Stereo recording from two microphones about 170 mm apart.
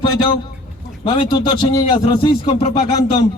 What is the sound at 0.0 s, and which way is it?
A man's voice, 30° left (ahead or behind).